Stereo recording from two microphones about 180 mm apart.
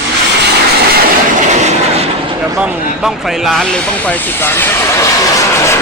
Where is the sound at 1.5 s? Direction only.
40° right (ahead or behind).